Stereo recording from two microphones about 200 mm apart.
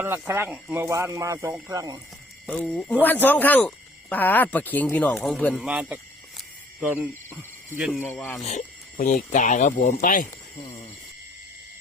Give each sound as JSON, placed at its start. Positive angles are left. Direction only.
{"t": 0.0, "sound": "speech", "side_deg": -10}
{"t": 2.5, "sound": "a man's voice", "side_deg": 5}
{"t": 5.6, "sound": "cricket", "side_deg": -5}
{"t": 7.8, "sound": "speech", "side_deg": 0}
{"t": 8.4, "sound": "speech", "side_deg": 40}